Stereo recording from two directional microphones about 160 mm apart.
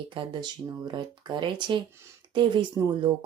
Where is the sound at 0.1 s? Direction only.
30° right (ahead or behind).